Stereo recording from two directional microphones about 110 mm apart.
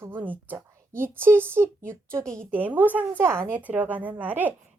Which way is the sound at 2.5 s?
15° right (ahead or behind).